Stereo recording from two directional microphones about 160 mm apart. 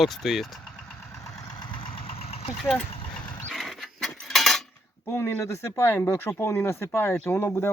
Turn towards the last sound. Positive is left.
turn(degrees=15)  # may be behind; listen again after turning